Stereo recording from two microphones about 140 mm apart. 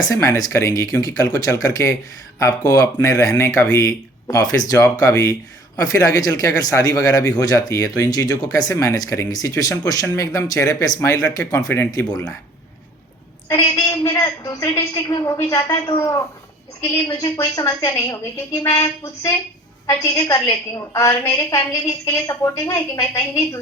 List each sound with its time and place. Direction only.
0.0 s speech: 25° left (ahead or behind)
13.5 s speech: 25° left (ahead or behind)